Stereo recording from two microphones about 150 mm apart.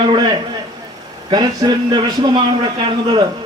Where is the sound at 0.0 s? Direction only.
30° right (ahead or behind).